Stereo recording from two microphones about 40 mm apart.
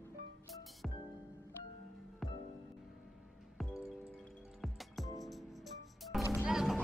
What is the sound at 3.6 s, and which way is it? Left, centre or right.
Music, centre.